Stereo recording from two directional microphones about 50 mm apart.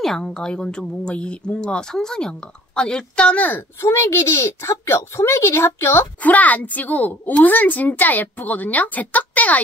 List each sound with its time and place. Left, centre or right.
0.0 s a woman's voice: centre
3.3 s a woman's voice: left
3.8 s speech: left
6.2 s a woman's voice: left